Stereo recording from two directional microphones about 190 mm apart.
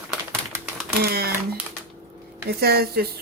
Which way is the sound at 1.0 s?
55° right (ahead or behind).